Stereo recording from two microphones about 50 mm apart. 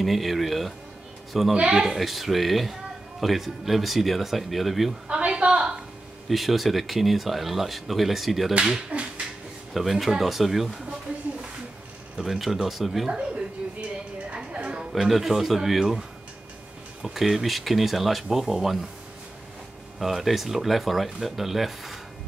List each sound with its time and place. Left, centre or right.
0.0 s speech: centre
5.0 s a sound: centre
6.2 s speech: centre
8.5 s speech: centre
9.8 s speech: centre
11.1 s a sound: right
12.2 s speech: centre
13.1 s a sound: right
14.9 s speech: centre
17.0 s speech: centre
20.0 s speech: centre